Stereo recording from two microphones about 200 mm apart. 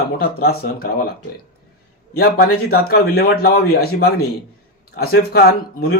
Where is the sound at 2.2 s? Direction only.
50° left (ahead or behind).